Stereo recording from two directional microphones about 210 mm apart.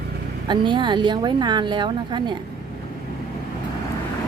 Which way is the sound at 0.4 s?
20° right (ahead or behind).